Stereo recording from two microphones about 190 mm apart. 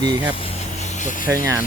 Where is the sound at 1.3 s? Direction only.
15° right (ahead or behind).